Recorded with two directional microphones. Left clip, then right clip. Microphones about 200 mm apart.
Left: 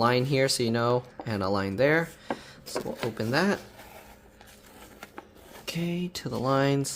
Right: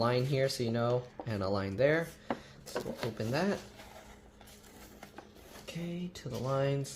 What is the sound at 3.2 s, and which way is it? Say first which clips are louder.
Speech: left 7 dB; 30° left (ahead or behind).